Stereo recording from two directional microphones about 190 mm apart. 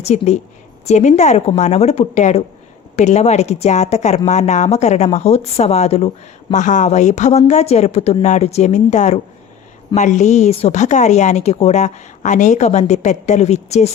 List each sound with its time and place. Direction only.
0.0 s a woman's voice: 35° left (ahead or behind)